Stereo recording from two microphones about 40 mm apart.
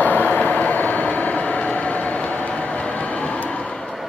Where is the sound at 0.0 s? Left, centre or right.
Left.